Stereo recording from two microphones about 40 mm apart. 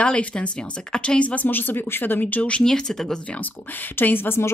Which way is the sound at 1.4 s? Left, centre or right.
Left.